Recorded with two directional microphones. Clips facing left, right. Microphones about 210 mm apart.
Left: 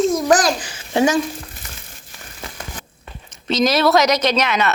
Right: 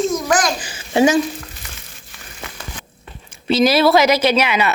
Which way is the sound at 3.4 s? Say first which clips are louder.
Right 3 dB; 5° right (ahead or behind).